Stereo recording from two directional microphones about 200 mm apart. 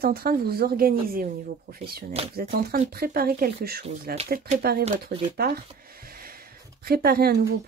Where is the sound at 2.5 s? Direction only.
50° right (ahead or behind).